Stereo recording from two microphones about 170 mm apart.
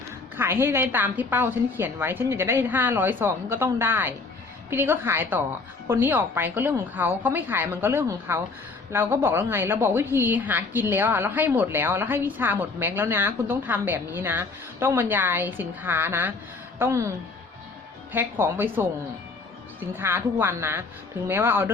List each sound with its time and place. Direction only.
0.3 s a woman's voice: 15° right (ahead or behind)
20.0 s a woman's voice: 15° right (ahead or behind)